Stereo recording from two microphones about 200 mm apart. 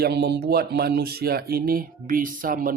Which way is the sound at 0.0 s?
55° right (ahead or behind).